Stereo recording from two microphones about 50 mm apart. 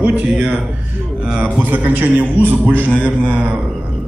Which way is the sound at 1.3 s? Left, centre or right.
Right.